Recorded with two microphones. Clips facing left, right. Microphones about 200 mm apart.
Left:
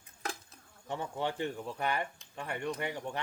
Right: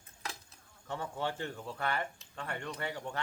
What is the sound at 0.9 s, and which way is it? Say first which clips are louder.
Speech: left 2 dB; 20° left (ahead or behind).